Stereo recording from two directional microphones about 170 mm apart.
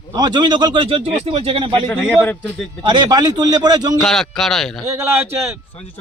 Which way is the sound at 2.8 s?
25° right (ahead or behind).